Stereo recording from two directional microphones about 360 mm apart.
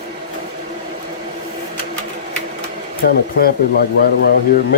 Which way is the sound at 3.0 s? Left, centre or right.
Left.